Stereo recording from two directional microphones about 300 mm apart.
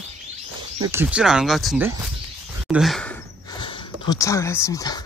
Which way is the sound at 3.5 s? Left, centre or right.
Centre.